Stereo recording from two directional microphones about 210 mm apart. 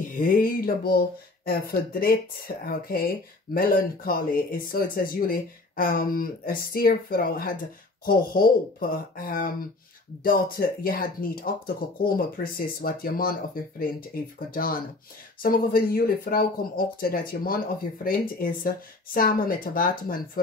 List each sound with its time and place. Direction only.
0.1 s speech: 40° left (ahead or behind)